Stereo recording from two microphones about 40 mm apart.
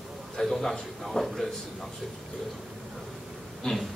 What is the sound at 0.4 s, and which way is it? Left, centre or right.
A man's voice, centre.